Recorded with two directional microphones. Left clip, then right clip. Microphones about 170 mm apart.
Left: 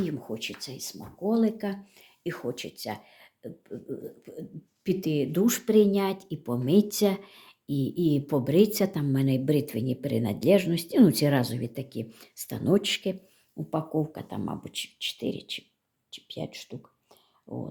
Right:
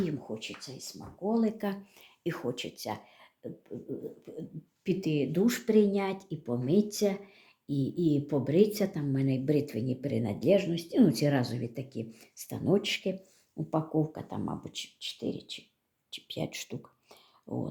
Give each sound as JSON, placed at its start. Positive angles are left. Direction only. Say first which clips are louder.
{"t": 0.3, "sound": "speech", "louder": "left 5 dB", "side_deg": 25}
{"t": 16.1, "sound": "speech", "louder": "right 1 dB", "side_deg": 0}